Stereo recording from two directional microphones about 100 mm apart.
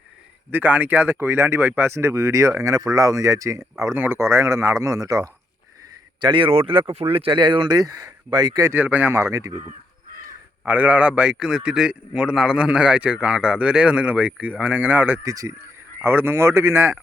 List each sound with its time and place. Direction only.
0.5 s speech: 15° right (ahead or behind); by 5.3 s 35° right (ahead or behind)
6.2 s speech: 60° right (ahead or behind); by 8.7 s 40° right (ahead or behind)
8.7 s speech: 20° right (ahead or behind)
10.7 s a man's voice: 15° right (ahead or behind)
15.2 s a man's voice: 30° right (ahead or behind)